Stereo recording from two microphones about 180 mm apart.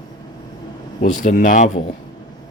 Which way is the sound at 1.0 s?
50° left (ahead or behind).